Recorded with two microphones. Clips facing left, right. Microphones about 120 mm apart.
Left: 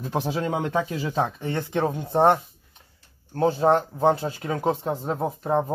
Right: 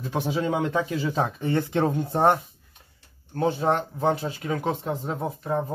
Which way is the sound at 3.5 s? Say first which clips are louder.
Left 4 dB; 35° left (ahead or behind).